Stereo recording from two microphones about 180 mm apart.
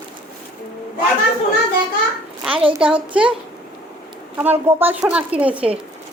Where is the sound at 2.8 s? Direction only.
5° right (ahead or behind).